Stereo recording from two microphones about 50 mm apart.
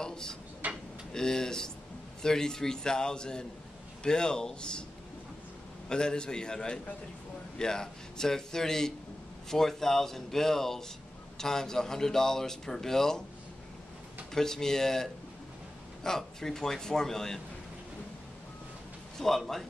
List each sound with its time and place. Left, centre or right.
0.0 s drawer open or close: centre
0.6 s tick-tock: right
1.1 s a man's voice: centre
5.9 s a man's voice: centre
14.3 s a man's voice: centre
19.1 s a man's voice: centre